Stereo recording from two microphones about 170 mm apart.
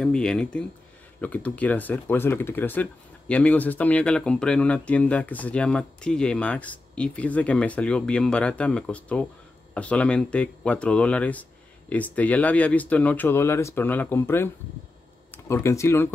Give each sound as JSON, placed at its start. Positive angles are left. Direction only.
{"t": 0.0, "sound": "speech", "side_deg": 5}